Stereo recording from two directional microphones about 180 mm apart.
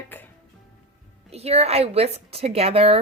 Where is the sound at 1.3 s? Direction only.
35° right (ahead or behind).